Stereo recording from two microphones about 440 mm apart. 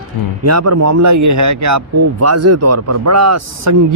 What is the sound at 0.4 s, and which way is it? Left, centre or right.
A man's voice, right.